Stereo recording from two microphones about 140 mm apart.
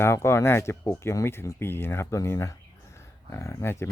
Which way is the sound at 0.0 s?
20° left (ahead or behind).